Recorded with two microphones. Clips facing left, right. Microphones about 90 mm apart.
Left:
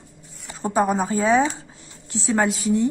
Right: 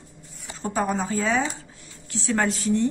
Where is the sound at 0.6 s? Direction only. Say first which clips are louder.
Left 5 dB; 15° left (ahead or behind).